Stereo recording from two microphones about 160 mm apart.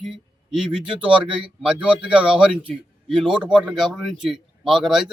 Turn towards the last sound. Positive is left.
turn(degrees=-5)  # may be behind; listen again after turning